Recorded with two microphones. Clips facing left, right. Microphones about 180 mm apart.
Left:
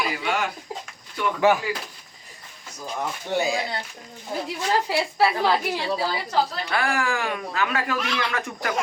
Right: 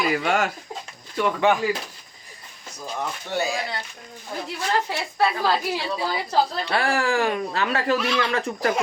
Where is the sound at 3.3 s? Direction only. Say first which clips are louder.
Left 2 dB; 15° left (ahead or behind).